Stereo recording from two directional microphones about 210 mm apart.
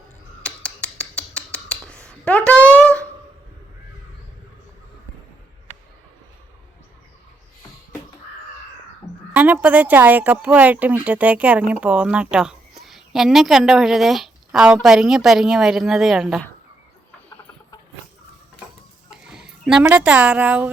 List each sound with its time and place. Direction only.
0.4 s a sound: 5° left (ahead or behind)
9.3 s a woman's voice: 5° right (ahead or behind)
19.2 s speech: 5° right (ahead or behind)